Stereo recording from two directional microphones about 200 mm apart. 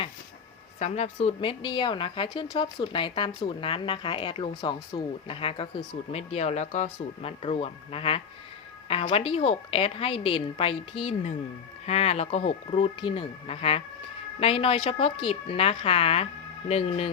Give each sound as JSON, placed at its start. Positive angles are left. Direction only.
{"t": 0.8, "sound": "a woman's voice", "side_deg": 35}